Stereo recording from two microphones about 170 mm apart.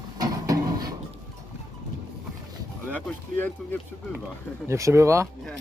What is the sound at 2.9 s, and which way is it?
Speech, 10° left (ahead or behind).